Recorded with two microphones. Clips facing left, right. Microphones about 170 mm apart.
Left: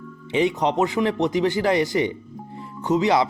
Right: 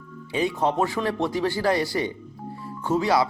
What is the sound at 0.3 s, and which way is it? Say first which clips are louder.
Speech: left 3 dB; 20° left (ahead or behind).